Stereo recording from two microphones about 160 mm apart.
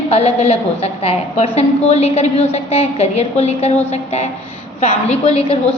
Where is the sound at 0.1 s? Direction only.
35° left (ahead or behind).